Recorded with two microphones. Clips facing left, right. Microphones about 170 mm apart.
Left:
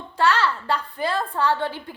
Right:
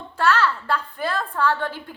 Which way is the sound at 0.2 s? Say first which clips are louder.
Even; 15° left (ahead or behind).